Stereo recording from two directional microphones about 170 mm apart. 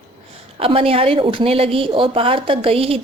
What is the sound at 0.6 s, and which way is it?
A woman's voice, 35° right (ahead or behind).